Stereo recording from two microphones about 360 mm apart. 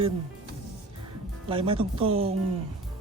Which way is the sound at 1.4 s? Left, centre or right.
Centre.